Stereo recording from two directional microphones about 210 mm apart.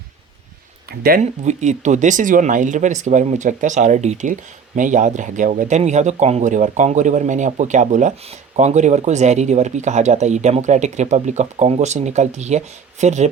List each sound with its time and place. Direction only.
0.9 s speech: 45° right (ahead or behind)
1.2 s speech: 35° right (ahead or behind)